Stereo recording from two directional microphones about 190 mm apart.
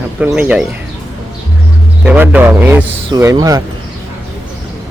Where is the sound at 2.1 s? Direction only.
10° right (ahead or behind).